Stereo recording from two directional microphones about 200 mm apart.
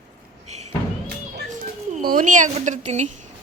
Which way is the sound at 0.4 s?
35° right (ahead or behind).